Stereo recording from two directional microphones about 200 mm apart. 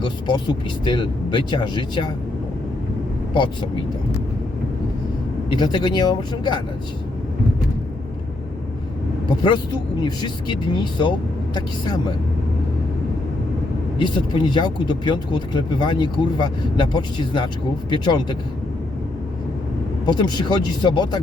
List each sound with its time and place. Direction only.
0.0 s speech: 25° left (ahead or behind)
3.3 s speech: 20° left (ahead or behind)
5.5 s speech: 20° left (ahead or behind)
9.4 s speech: 25° left (ahead or behind)
14.0 s speech: 25° left (ahead or behind)
20.1 s speech: 20° left (ahead or behind)